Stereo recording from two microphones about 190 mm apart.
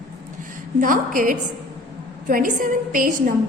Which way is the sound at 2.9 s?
45° right (ahead or behind).